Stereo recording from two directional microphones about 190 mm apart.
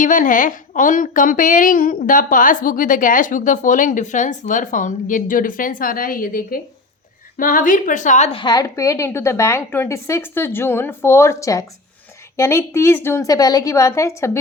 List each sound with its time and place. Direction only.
0.0 s a woman's voice: 45° left (ahead or behind); by 14.3 s 15° left (ahead or behind)